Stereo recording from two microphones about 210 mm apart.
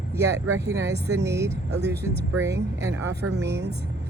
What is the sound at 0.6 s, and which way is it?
Speech, 15° right (ahead or behind).